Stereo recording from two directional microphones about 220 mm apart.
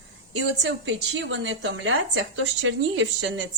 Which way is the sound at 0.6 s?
60° right (ahead or behind).